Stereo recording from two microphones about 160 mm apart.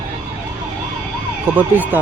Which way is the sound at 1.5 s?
10° right (ahead or behind).